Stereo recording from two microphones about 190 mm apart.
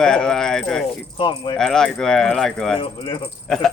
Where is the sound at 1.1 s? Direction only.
25° left (ahead or behind).